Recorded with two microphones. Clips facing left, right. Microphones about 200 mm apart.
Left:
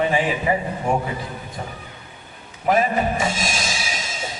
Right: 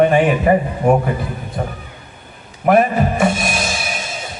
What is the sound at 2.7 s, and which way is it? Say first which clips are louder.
Music: right 5 dB; 55° right (ahead or behind).